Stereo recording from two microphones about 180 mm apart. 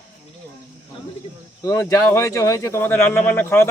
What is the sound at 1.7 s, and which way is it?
Speech, 15° left (ahead or behind).